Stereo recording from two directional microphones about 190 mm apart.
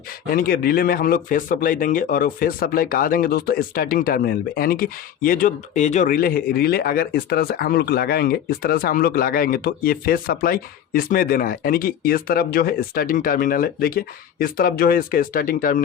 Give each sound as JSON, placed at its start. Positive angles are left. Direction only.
{"t": 0.3, "sound": "speech", "side_deg": 50}